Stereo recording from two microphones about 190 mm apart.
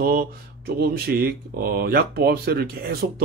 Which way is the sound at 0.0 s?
50° right (ahead or behind).